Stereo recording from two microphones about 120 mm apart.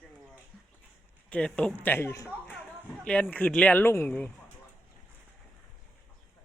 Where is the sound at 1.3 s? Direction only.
10° left (ahead or behind).